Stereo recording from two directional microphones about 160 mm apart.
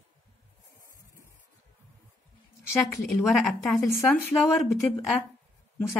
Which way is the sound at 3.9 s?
15° left (ahead or behind).